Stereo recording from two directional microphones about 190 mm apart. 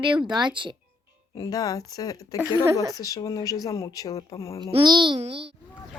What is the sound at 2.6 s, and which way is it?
Speech, 15° right (ahead or behind).